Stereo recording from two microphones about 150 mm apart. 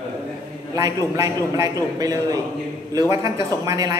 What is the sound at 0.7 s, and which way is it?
A woman's voice, 25° right (ahead or behind).